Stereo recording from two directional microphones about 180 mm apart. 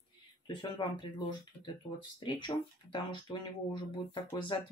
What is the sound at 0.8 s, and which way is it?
Speech, 25° left (ahead or behind).